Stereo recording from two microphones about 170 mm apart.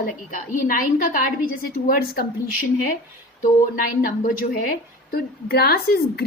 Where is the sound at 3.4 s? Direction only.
55° left (ahead or behind).